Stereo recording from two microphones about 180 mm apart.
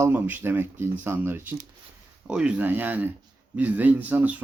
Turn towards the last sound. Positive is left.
turn(degrees=-10)  # may be behind; listen again after turning